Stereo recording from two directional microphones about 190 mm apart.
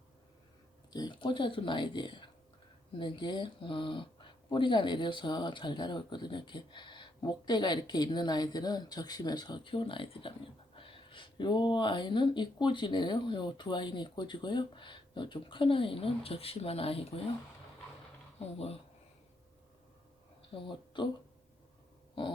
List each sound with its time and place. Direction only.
0.9 s speech: 25° left (ahead or behind)
18.3 s speech: 30° left (ahead or behind)
20.5 s speech: 25° left (ahead or behind)